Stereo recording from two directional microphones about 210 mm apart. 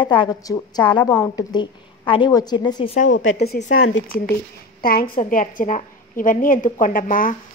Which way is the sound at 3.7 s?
75° left (ahead or behind).